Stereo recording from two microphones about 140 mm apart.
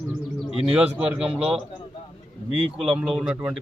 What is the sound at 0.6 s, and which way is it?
Speech, 5° right (ahead or behind).